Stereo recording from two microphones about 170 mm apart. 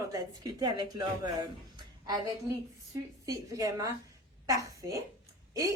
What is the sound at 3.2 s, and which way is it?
A woman's voice, 20° right (ahead or behind).